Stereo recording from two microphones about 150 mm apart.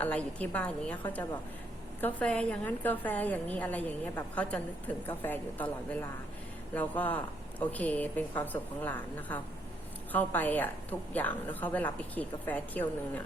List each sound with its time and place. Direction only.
0.0 s a woman's voice: 10° left (ahead or behind)